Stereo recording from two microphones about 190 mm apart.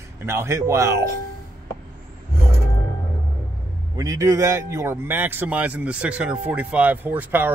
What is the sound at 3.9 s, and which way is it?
Speech, 20° right (ahead or behind).